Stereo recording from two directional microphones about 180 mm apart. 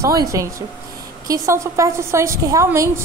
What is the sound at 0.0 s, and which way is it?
A woman's voice, 20° right (ahead or behind).